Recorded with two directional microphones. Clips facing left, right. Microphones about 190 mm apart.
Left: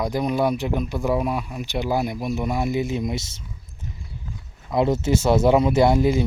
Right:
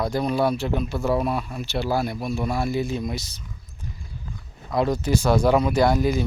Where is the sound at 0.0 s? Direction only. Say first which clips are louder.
Even; 15° left (ahead or behind).